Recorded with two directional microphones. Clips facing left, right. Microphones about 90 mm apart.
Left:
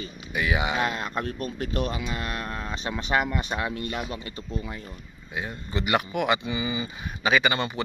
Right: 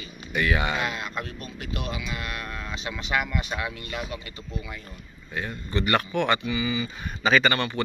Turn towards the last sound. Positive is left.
turn(degrees=10)  # may be behind; listen again after turning